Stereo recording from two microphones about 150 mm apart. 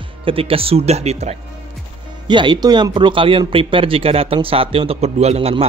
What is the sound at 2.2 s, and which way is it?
Speech, 30° right (ahead or behind).